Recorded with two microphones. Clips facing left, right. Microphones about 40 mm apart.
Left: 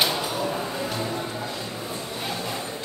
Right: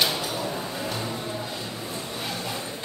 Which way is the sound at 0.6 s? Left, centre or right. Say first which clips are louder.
Left 2 dB; centre.